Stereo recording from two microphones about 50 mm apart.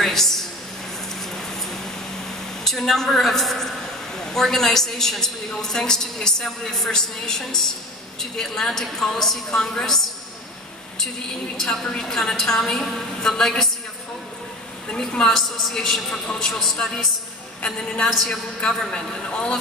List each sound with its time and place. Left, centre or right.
0.0 s a sound: centre
2.6 s a man's voice: centre
11.5 s a woman's voice: centre
14.9 s a woman's voice: centre